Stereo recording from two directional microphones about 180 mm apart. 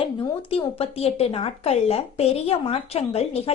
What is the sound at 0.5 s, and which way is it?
A woman's voice, 35° left (ahead or behind).